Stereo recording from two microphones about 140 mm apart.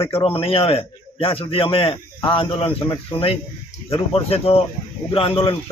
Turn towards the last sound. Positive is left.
turn(degrees=40)  # may be behind; listen again after turning